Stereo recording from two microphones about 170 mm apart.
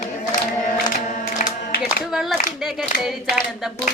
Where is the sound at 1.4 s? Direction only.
55° left (ahead or behind).